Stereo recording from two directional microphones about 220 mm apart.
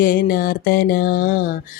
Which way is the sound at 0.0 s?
40° left (ahead or behind).